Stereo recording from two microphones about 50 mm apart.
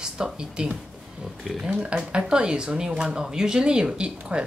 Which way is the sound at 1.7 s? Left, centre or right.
Centre.